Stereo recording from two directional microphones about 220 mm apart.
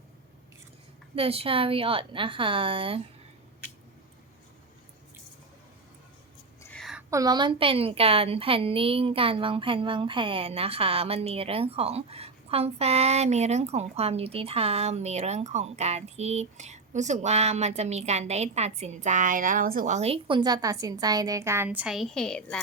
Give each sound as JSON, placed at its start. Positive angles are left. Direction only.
{"t": 1.1, "sound": "a woman's voice", "side_deg": -25}
{"t": 6.6, "sound": "a sound", "side_deg": 5}
{"t": 7.1, "sound": "a woman's voice", "side_deg": -15}